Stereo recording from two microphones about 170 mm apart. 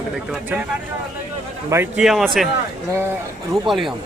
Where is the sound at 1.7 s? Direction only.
15° right (ahead or behind).